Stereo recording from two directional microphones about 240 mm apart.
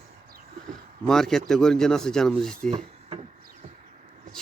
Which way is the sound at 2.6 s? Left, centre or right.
Right.